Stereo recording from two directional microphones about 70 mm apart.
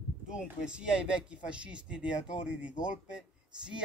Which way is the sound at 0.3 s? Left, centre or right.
Centre.